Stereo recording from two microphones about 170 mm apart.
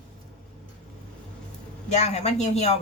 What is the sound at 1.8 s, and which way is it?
Speech, 40° left (ahead or behind).